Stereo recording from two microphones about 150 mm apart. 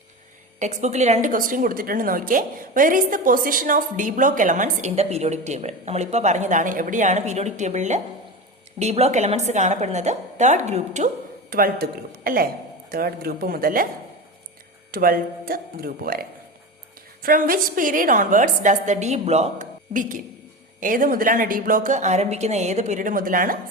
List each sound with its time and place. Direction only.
0.6 s a woman's voice: 50° right (ahead or behind)
11.5 s speech: 75° right (ahead or behind)
14.9 s speech: 80° right
17.2 s a woman's voice: 70° right (ahead or behind)